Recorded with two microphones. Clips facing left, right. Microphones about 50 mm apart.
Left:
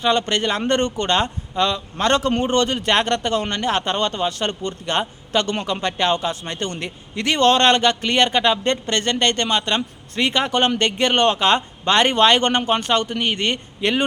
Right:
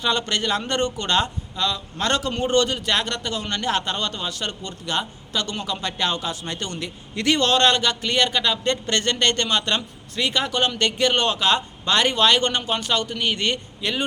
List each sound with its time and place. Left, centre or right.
0.0 s a man's voice: left
3.5 s a man's voice: left
10.2 s a man's voice: left
13.8 s a man's voice: left